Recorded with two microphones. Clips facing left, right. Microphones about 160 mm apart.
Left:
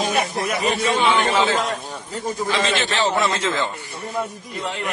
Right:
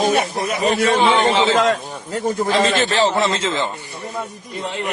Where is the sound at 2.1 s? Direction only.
65° right (ahead or behind).